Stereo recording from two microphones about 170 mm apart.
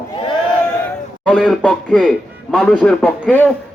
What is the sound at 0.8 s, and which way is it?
Speech, 5° left (ahead or behind).